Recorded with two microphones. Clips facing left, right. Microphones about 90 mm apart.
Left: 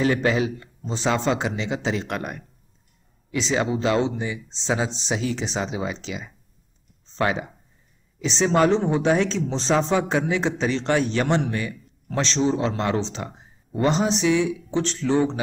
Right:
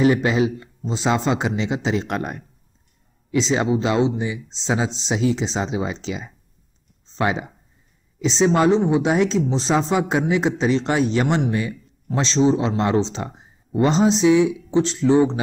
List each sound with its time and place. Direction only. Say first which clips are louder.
0.0 s a man's voice: right 3 dB; 20° right (ahead or behind)